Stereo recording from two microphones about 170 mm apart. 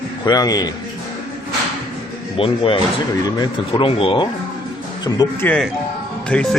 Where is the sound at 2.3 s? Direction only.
30° left (ahead or behind).